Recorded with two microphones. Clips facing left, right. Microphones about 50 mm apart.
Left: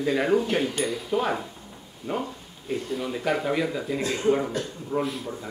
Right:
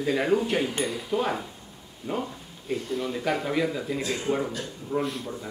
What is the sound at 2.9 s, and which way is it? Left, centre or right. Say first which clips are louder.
Speech: left 1 dB; centre.